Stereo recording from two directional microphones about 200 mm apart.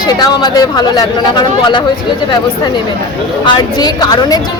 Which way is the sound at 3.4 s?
20° left (ahead or behind).